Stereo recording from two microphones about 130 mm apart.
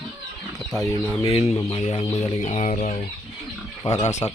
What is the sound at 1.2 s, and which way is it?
Speech, 45° left (ahead or behind).